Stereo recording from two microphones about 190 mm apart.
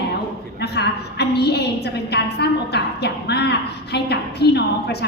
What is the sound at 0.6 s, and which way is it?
A woman's voice, 60° left (ahead or behind).